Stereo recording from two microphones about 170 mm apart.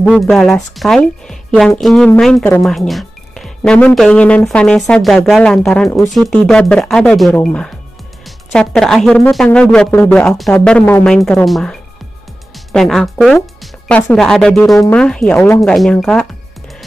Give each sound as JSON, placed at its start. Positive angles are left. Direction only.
{"t": 0.1, "sound": "speech", "side_deg": 0}
{"t": 2.3, "sound": "speech", "side_deg": 15}
{"t": 2.6, "sound": "speech", "side_deg": 0}
{"t": 11.4, "sound": "speech", "side_deg": 0}
{"t": 15.3, "sound": "speech", "side_deg": 15}
{"t": 15.6, "sound": "speech", "side_deg": 0}